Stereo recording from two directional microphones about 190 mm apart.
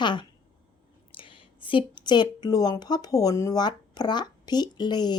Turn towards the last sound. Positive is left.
turn(degrees=20)  # may be behind; listen again after turning